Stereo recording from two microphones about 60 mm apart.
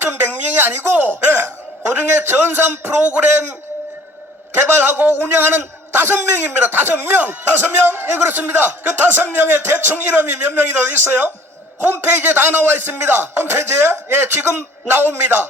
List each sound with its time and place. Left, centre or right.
0.0 s speech: right
4.8 s a man's voice: right